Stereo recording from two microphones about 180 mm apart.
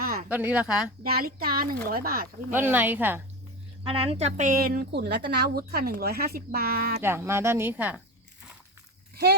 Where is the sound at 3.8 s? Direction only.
30° right (ahead or behind); by 6.9 s 55° right (ahead or behind).